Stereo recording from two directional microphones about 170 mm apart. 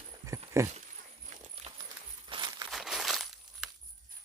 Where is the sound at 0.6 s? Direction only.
15° right (ahead or behind).